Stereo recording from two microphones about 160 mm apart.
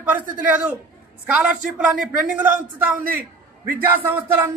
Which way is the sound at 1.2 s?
10° right (ahead or behind).